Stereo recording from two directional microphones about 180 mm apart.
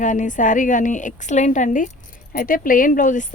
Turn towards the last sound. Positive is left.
turn(degrees=45)  # may be behind; listen again after turning